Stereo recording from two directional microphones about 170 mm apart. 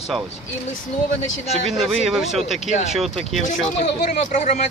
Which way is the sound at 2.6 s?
40° left (ahead or behind).